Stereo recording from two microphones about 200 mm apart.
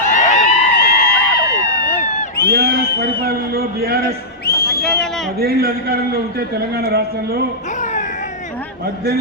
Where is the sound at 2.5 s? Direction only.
55° right (ahead or behind).